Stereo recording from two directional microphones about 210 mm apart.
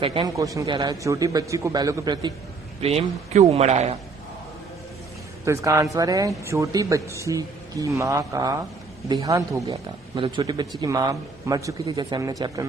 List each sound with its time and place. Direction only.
0.0 s speech: 25° right (ahead or behind)
2.8 s a man's voice: 30° right (ahead or behind)
5.5 s speech: 15° right (ahead or behind)